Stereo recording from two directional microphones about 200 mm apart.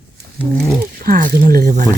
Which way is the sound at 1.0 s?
45° right (ahead or behind).